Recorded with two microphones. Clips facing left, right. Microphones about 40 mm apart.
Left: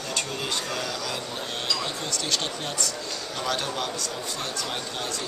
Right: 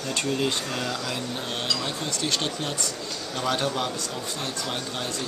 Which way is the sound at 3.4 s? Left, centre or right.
Centre.